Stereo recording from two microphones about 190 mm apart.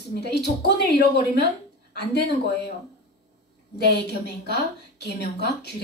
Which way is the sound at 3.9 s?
60° left (ahead or behind).